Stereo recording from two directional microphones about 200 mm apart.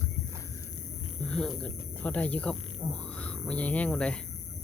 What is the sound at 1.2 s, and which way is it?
Speech, 5° left (ahead or behind).